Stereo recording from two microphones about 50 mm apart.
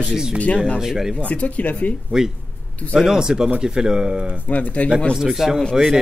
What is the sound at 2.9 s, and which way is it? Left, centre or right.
Speech, centre.